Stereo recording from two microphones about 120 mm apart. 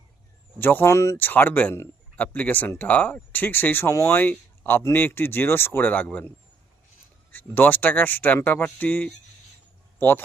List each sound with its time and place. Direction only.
0.6 s a man's voice: 15° left (ahead or behind)